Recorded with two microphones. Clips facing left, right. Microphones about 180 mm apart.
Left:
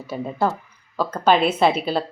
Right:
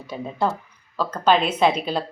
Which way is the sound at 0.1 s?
5° left (ahead or behind).